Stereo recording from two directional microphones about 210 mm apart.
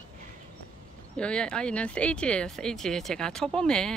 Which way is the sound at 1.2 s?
5° left (ahead or behind).